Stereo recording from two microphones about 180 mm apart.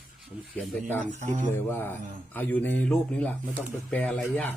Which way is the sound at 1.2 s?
40° right (ahead or behind).